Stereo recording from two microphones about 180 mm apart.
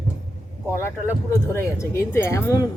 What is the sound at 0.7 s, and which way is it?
Speech, 15° left (ahead or behind).